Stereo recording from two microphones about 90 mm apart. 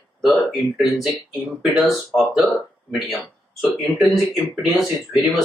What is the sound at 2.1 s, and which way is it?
Speech, 5° left (ahead or behind).